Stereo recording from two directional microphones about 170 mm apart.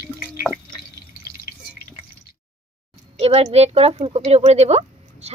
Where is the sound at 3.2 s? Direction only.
35° right (ahead or behind).